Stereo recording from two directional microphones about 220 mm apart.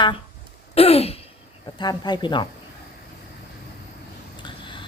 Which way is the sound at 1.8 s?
20° left (ahead or behind).